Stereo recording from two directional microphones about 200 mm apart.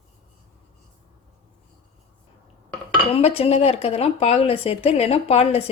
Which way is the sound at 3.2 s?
30° left (ahead or behind).